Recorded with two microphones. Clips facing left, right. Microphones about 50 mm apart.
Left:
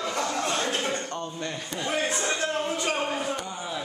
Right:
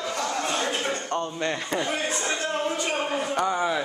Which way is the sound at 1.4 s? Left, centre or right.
Right.